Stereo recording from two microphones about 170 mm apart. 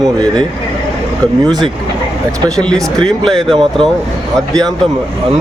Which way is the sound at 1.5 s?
25° right (ahead or behind).